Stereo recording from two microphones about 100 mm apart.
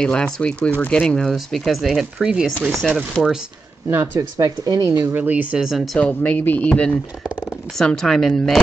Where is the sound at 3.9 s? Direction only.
20° right (ahead or behind).